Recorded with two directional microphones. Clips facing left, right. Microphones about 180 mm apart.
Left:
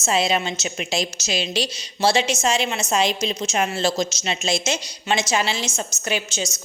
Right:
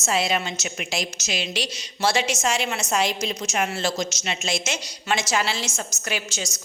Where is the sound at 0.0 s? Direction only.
25° left (ahead or behind).